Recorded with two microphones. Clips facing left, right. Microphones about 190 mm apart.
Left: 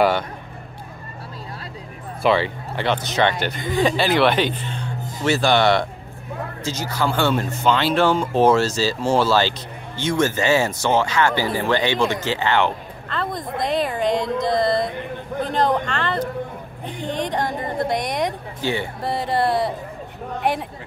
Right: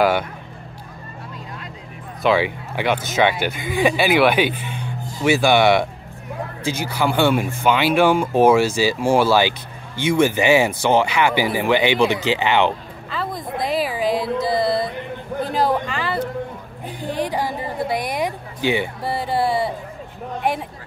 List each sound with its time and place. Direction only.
2.2 s speech: 10° right (ahead or behind)
13.1 s a woman's voice: 5° right (ahead or behind)
18.6 s speech: 15° right (ahead or behind)
19.0 s a woman's voice: centre (ahead or behind)